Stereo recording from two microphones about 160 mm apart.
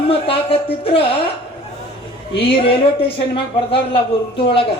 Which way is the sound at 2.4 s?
35° left (ahead or behind).